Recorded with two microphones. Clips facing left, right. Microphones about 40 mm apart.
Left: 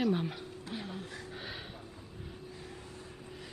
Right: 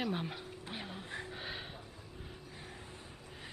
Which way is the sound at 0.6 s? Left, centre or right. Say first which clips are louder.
Left 4 dB; right.